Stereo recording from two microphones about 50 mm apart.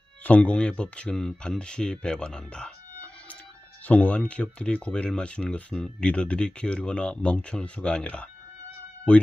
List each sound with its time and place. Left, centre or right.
0.2 s speech: left
3.8 s speech: left